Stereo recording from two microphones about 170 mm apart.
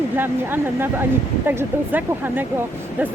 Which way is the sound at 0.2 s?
10° right (ahead or behind).